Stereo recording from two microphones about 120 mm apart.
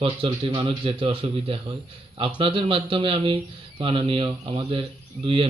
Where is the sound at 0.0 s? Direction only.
50° right (ahead or behind).